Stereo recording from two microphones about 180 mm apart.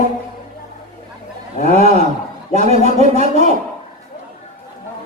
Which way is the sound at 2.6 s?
35° right (ahead or behind).